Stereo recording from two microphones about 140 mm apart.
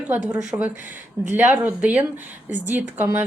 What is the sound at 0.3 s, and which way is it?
A woman's voice, 15° right (ahead or behind).